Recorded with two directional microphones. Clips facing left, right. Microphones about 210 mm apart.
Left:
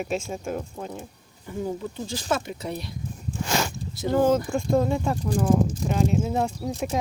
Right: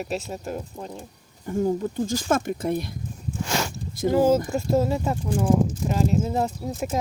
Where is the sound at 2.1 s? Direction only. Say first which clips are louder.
Right 2 dB; 45° right (ahead or behind).